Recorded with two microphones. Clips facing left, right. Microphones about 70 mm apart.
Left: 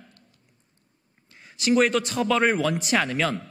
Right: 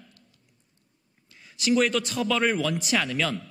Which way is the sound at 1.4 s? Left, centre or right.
Left.